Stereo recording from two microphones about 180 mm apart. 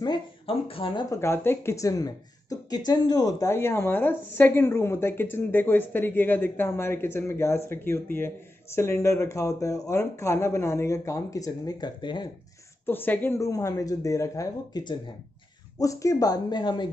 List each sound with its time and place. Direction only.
0.0 s speech: 30° left (ahead or behind)
1.1 s speech: 15° left (ahead or behind)
12.8 s speech: 10° left (ahead or behind)